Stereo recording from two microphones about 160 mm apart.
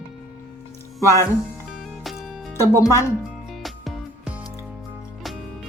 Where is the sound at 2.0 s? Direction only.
Centre (ahead or behind).